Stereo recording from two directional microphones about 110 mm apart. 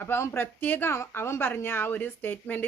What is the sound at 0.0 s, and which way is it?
Speech, 20° left (ahead or behind).